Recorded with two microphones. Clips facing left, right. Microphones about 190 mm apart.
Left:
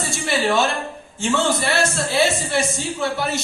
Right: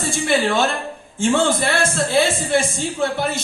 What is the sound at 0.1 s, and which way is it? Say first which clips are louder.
A woman's voice: right 2 dB; 50° right (ahead or behind).